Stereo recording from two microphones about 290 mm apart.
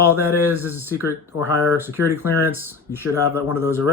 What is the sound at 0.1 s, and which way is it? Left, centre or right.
Speech, centre.